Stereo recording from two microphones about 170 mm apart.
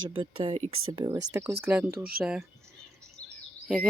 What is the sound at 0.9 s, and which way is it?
Speech, 20° right (ahead or behind).